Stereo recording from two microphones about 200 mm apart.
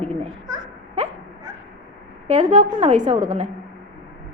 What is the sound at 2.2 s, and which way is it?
A woman's voice, 35° right (ahead or behind).